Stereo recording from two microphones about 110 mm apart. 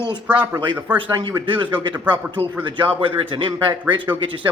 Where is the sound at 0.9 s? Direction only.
45° right (ahead or behind).